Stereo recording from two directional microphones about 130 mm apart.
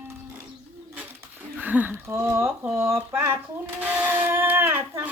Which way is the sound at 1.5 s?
15° right (ahead or behind).